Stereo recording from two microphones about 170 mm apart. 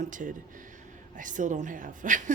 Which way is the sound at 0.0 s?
50° right (ahead or behind).